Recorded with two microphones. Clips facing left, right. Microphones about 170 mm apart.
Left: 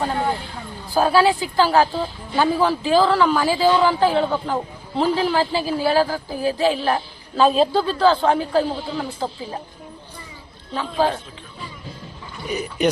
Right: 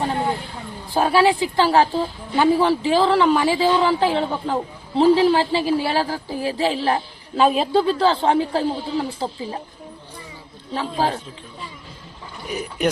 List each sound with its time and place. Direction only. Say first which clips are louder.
0.9 s a woman's voice: even; 25° right (ahead or behind)
10.8 s speech: left 2 dB; 35° right (ahead or behind)
12.5 s speech: left 2 dB; centre (ahead or behind)